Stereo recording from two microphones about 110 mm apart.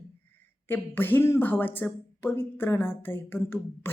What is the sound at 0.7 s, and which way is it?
Speech, 20° left (ahead or behind).